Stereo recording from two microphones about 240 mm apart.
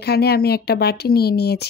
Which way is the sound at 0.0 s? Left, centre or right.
Left.